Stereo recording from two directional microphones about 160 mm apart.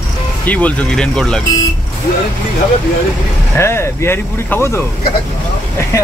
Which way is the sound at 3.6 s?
15° left (ahead or behind).